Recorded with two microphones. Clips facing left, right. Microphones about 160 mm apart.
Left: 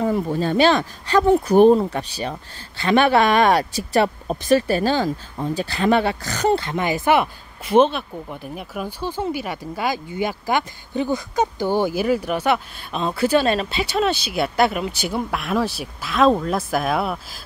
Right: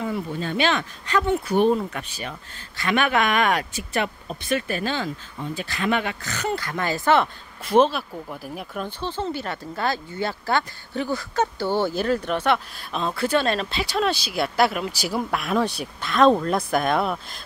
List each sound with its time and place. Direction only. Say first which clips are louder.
0.0 s speech: left 7 dB; 40° left (ahead or behind); by 7.2 s 15° left (ahead or behind)
7.6 s speech: left 2 dB; centre (ahead or behind)